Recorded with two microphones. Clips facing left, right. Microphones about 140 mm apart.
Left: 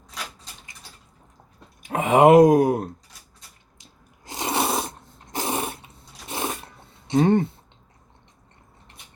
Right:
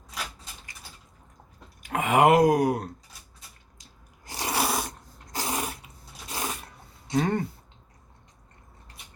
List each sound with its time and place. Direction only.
1.8 s speech: 25° left (ahead or behind)
4.3 s a sound: 25° left (ahead or behind)
7.1 s speech: 25° left (ahead or behind)